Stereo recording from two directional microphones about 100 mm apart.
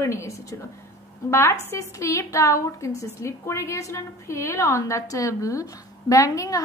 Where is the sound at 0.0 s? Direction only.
30° left (ahead or behind).